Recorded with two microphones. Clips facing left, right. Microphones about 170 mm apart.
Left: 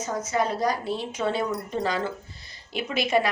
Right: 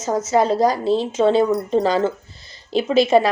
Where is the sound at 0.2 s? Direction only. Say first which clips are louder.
Right 9 dB; 90° right.